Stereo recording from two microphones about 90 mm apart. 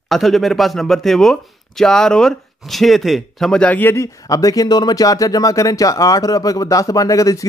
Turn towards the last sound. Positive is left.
turn(degrees=40)  # may be behind; listen again after turning